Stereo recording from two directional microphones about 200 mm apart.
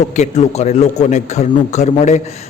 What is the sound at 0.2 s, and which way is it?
Speech, 35° left (ahead or behind).